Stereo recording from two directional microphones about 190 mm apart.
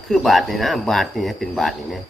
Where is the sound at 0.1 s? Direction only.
Centre (ahead or behind).